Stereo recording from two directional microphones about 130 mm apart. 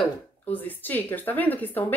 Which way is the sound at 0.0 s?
10° left (ahead or behind).